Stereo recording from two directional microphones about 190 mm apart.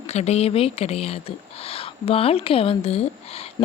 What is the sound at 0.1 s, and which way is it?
Speech, 35° left (ahead or behind).